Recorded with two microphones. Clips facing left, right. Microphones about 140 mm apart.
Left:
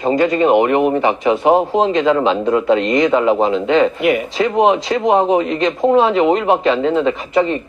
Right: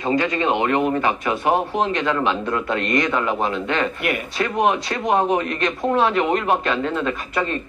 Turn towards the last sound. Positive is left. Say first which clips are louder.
# left 8 dB
turn(degrees=20)  # may be behind; listen again after turning